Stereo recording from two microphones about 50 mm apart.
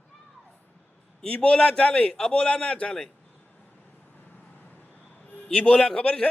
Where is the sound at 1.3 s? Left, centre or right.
Left.